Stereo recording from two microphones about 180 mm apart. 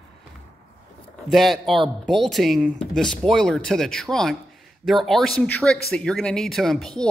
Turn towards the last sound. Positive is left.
turn(degrees=0)  # may be behind; listen again after turning